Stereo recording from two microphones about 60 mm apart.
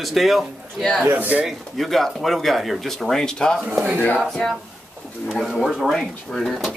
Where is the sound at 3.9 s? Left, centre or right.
Left.